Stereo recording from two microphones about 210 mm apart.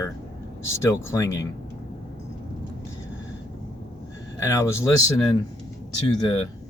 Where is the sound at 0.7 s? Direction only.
15° left (ahead or behind).